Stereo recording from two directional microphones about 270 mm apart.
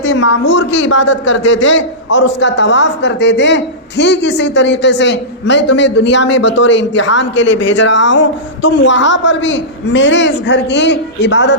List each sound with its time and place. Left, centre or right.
0.0 s a man's voice: left